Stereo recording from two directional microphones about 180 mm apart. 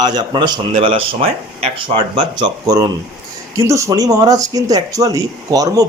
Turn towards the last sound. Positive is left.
turn(degrees=-20)  # may be behind; listen again after turning